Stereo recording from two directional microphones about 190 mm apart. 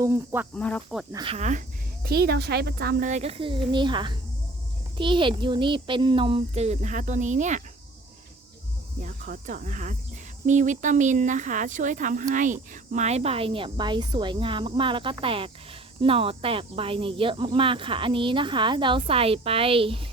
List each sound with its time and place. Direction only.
0.0 s speech: 10° right (ahead or behind)
0.5 s speech: 5° left (ahead or behind)
1.1 s a child's voice: 30° right (ahead or behind)
2.0 s a child's voice: 55° right (ahead or behind); by 7.6 s 40° right (ahead or behind)
9.0 s speech: 45° right (ahead or behind); by 20.1 s 30° right (ahead or behind)